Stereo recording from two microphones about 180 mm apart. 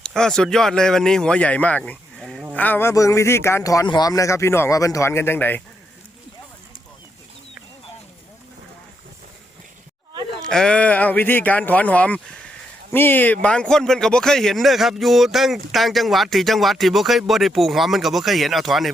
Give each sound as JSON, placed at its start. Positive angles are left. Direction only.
{"t": 0.0, "sound": "speech", "side_deg": 5}
{"t": 10.5, "sound": "speech", "side_deg": 5}